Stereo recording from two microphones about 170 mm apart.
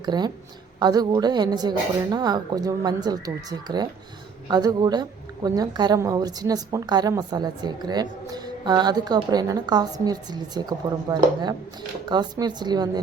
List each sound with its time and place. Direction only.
0.0 s a woman's voice: 25° right (ahead or behind)